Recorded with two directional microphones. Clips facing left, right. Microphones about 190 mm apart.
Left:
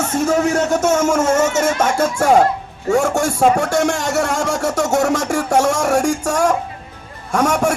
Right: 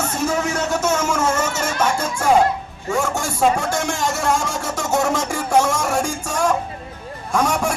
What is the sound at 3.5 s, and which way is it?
Speech, 70° left (ahead or behind).